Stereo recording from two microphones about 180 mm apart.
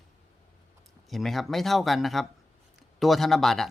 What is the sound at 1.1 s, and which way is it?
A man's voice, centre (ahead or behind).